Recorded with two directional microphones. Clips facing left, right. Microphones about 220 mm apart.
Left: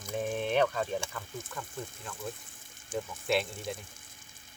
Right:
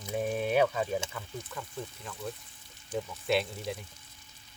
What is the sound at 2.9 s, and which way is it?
Speech, 50° left (ahead or behind).